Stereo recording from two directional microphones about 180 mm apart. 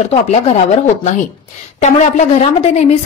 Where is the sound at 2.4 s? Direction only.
35° left (ahead or behind).